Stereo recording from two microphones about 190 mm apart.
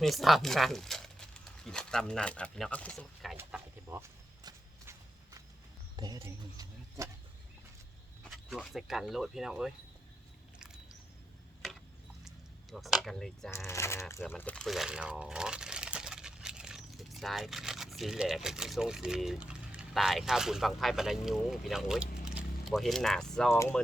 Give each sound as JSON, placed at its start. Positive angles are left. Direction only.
{"t": 0.0, "sound": "speech", "side_deg": 0}
{"t": 3.3, "sound": "a sound", "side_deg": -10}
{"t": 4.4, "sound": "clip-clop", "side_deg": -15}
{"t": 6.0, "sound": "speech", "side_deg": -20}
{"t": 8.2, "sound": "speech", "side_deg": 0}
{"t": 12.7, "sound": "speech", "side_deg": 0}
{"t": 13.7, "sound": "speech", "side_deg": 15}